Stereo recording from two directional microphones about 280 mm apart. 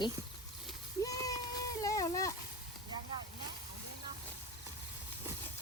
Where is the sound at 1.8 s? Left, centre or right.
Centre.